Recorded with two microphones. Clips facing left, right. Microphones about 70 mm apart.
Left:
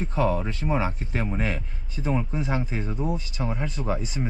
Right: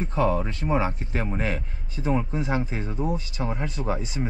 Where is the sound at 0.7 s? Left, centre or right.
Right.